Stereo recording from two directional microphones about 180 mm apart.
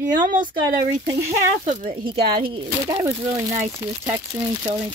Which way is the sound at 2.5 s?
20° right (ahead or behind).